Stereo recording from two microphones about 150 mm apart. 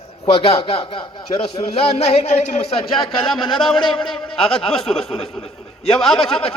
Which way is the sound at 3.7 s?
35° left (ahead or behind).